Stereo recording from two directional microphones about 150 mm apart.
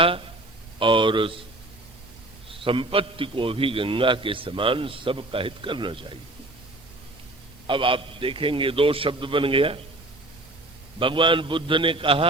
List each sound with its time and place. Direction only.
0.8 s a man's voice: 35° right (ahead or behind)
2.5 s a man's voice: 35° right (ahead or behind)
7.7 s a man's voice: 35° right (ahead or behind)
11.0 s a man's voice: 35° right (ahead or behind)